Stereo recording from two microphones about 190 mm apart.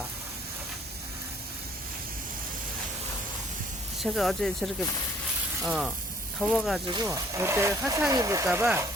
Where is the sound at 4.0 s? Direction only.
Centre (ahead or behind).